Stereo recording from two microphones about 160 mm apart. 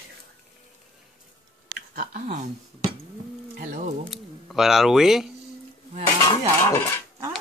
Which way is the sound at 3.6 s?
50° right (ahead or behind).